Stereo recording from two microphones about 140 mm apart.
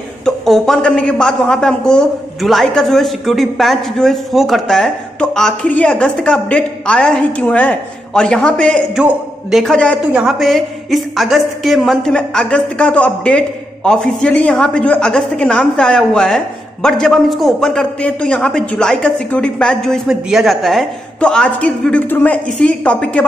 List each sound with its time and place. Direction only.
0.2 s a woman's voice: 5° left (ahead or behind)
8.9 s a woman's voice: 5° right (ahead or behind)